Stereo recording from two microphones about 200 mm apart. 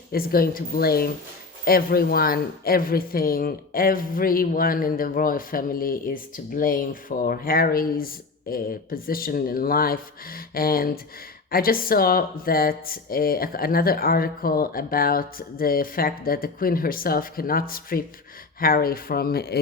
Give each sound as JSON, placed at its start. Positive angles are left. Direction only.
{"t": 0.1, "sound": "a woman's voice", "side_deg": 45}